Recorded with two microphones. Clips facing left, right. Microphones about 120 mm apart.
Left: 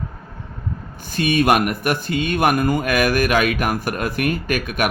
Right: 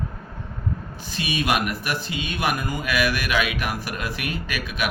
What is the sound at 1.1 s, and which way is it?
Speech, 50° left (ahead or behind).